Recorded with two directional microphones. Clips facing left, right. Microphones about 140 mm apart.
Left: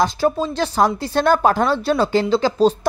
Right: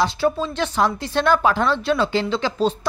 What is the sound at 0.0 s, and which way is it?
Speech, 40° left (ahead or behind).